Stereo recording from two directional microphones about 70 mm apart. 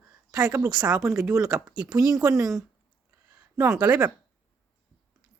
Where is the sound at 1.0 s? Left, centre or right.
Centre.